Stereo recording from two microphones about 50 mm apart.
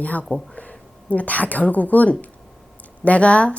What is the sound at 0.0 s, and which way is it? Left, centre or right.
A woman's voice, left.